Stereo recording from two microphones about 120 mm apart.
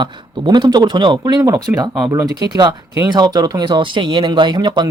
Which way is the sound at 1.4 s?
25° right (ahead or behind).